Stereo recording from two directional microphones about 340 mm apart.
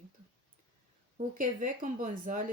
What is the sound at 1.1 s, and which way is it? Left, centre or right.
Speech, right.